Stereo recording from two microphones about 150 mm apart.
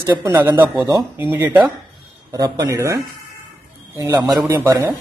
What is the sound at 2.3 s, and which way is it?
Speech, 25° right (ahead or behind).